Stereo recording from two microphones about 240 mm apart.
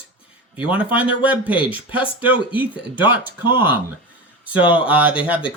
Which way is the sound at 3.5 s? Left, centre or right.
Centre.